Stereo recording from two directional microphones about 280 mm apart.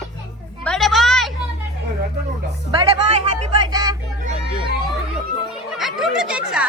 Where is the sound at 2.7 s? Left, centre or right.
Right.